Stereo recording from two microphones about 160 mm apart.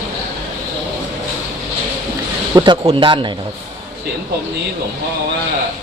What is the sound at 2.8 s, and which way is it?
Speech, 30° right (ahead or behind).